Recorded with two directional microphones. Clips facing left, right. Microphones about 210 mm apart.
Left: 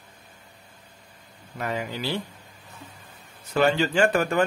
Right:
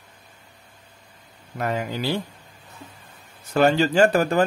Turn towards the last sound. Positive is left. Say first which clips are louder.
# right 4 dB
turn(degrees=-35)  # may be behind; listen again after turning